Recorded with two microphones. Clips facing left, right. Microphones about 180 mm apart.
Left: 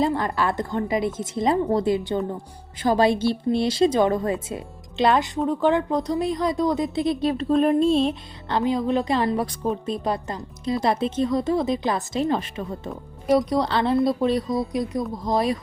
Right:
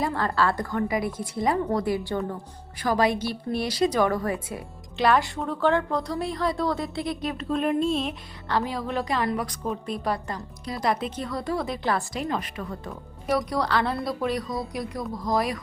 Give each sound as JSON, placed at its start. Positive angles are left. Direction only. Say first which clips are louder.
{"t": 0.0, "sound": "a woman's voice", "louder": "left 2 dB", "side_deg": 20}
{"t": 8.5, "sound": "a woman's voice", "louder": "left 5 dB", "side_deg": 20}